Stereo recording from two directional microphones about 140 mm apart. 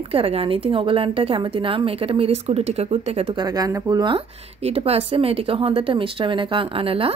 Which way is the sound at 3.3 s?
25° right (ahead or behind).